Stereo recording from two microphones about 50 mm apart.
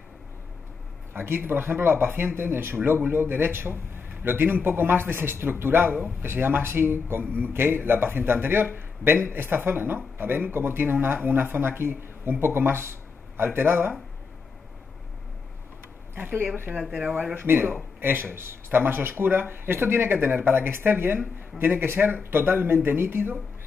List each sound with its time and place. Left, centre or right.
1.1 s a man's voice: right
6.2 s a man's voice: right
16.2 s a man's voice: right